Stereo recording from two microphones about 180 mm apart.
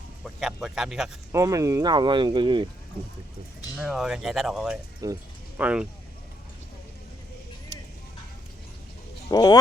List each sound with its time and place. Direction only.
0.3 s speech: 5° right (ahead or behind)
1.3 s speech: 15° right (ahead or behind)
3.8 s speech: centre (ahead or behind)
5.0 s speech: 20° right (ahead or behind)
5.5 s speech: 5° right (ahead or behind)
9.3 s speech: 20° left (ahead or behind)